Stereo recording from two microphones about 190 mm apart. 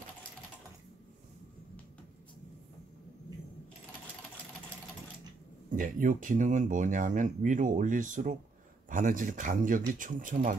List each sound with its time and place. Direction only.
5.7 s speech: 45° right (ahead or behind)